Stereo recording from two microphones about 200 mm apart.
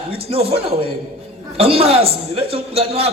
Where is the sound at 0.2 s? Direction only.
30° right (ahead or behind).